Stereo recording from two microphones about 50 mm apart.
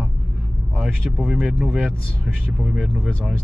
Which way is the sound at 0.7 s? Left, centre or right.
Centre.